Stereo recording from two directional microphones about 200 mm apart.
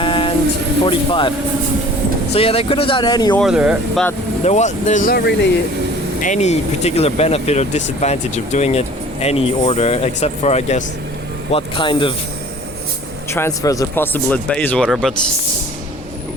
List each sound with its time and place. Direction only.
0.0 s a sound: 25° left (ahead or behind)
0.9 s speech: 25° left (ahead or behind)
2.3 s speech: 30° left (ahead or behind)
3.4 s speech: 5° right (ahead or behind)
4.4 s speech: 35° left (ahead or behind); by 5.5 s 55° left (ahead or behind)
6.2 s speech: 35° left (ahead or behind)
13.3 s speech: 15° left (ahead or behind)